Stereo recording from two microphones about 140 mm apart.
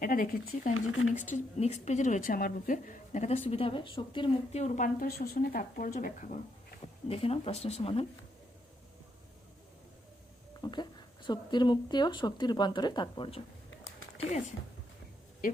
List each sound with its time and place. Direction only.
0.0 s speech: 90° left
1.1 s a woman's voice: 65° left (ahead or behind)
3.5 s a woman's voice: 40° left (ahead or behind)
4.5 s speech: 60° left (ahead or behind); by 6.7 s 75° left (ahead or behind)
7.1 s speech: 45° left (ahead or behind)
10.6 s a woman's voice: 30° left (ahead or behind)
14.3 s a woman's voice: 55° left (ahead or behind)